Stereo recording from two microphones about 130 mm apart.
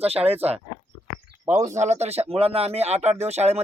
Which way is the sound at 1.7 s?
65° right (ahead or behind).